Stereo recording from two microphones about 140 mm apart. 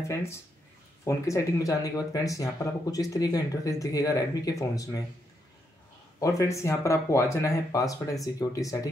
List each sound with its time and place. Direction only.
0.1 s speech: 20° left (ahead or behind)
6.1 s speech: 20° left (ahead or behind)